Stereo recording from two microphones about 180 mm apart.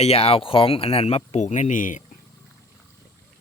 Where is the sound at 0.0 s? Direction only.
35° left (ahead or behind).